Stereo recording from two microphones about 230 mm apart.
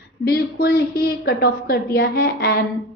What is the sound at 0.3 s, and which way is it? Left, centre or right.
A woman's voice, left.